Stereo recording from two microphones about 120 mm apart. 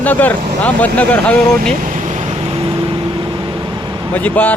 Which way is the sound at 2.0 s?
65° right (ahead or behind).